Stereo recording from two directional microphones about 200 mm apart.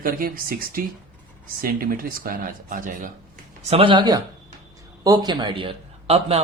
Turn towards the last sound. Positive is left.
turn(degrees=-30)  # may be behind; listen again after turning